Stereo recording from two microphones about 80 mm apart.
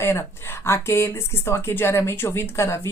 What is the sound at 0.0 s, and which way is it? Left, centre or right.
Speech, left.